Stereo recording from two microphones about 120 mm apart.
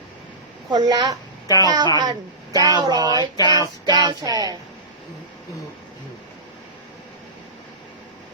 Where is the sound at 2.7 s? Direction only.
35° right (ahead or behind).